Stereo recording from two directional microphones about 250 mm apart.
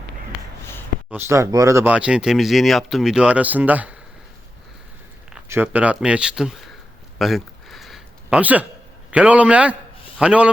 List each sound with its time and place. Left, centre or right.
1.1 s speech: centre
5.3 s speech: centre
7.2 s a sound: centre
9.0 s speech: centre